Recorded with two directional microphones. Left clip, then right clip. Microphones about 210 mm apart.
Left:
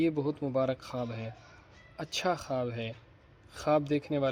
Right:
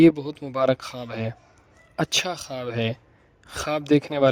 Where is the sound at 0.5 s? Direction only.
45° right (ahead or behind).